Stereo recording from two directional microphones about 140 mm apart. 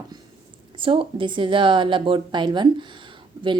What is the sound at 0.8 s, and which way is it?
A woman's voice, 40° right (ahead or behind).